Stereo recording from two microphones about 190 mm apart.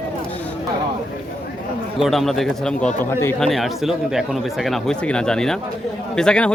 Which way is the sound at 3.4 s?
Centre (ahead or behind).